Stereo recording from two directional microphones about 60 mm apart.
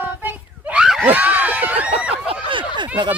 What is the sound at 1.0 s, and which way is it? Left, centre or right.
Speech, right.